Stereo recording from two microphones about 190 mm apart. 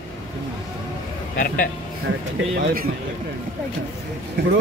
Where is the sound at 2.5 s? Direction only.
60° right (ahead or behind).